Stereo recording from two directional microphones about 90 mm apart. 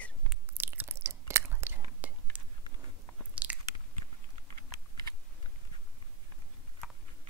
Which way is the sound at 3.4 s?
15° right (ahead or behind).